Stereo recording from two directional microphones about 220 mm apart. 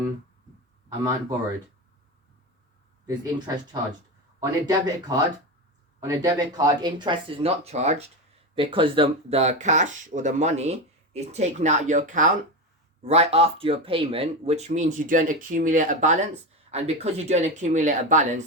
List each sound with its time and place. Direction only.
3.1 s speech: 20° right (ahead or behind); by 18.4 s 35° right (ahead or behind)